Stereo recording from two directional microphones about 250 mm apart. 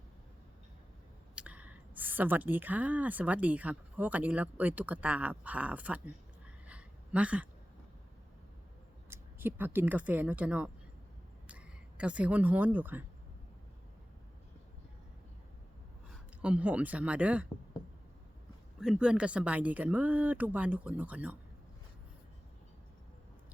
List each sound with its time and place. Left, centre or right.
1.4 s a woman's voice: centre
6.7 s a sound: centre
9.0 s speech: centre
16.4 s speech: centre
18.8 s speech: centre